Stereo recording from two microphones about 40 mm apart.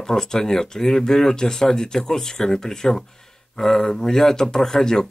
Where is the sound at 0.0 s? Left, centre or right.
Centre.